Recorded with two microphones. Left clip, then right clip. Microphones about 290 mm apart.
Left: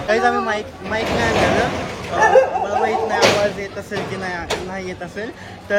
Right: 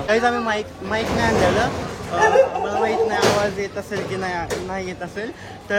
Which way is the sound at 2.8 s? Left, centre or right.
Centre.